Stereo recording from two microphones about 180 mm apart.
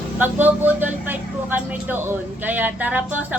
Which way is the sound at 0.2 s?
10° right (ahead or behind).